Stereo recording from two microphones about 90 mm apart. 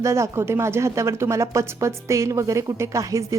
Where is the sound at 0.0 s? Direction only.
35° right (ahead or behind).